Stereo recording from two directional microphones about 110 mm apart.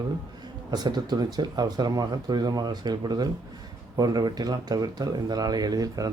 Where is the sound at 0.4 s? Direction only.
40° right (ahead or behind).